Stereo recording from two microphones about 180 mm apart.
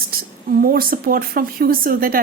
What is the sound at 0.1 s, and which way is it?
A woman's voice, 55° right (ahead or behind).